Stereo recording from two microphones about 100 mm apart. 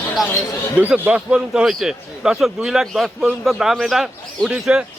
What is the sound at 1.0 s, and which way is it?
Speech, 10° right (ahead or behind).